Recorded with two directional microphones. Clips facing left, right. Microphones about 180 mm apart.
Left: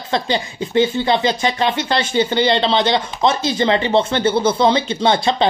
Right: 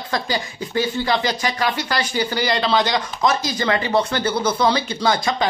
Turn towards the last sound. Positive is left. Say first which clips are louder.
# left 4 dB
turn(degrees=25)  # may be behind; listen again after turning